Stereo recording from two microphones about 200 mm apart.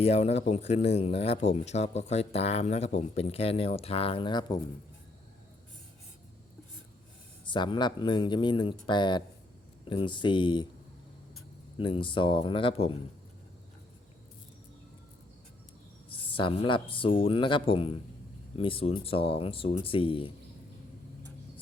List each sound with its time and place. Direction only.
0.0 s speech: 30° left (ahead or behind)
7.4 s speech: 25° left (ahead or behind)
11.8 s speech: 25° left (ahead or behind)
16.3 s speech: 25° left (ahead or behind)